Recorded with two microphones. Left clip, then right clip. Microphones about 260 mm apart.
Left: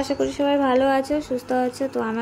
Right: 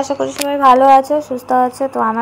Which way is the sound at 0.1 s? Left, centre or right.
Centre.